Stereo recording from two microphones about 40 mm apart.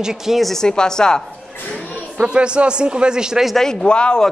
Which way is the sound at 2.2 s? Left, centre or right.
Right.